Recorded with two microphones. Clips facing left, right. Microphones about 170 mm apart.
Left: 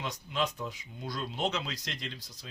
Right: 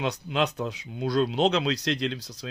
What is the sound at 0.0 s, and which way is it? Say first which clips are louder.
Speech: right 7 dB; 75° right (ahead or behind).